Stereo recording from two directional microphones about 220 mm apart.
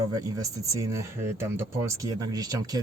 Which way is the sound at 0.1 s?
15° right (ahead or behind).